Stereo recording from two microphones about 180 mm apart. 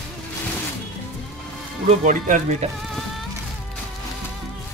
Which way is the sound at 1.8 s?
45° right (ahead or behind).